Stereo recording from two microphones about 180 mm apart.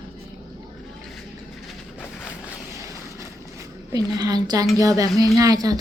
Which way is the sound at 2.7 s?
15° right (ahead or behind).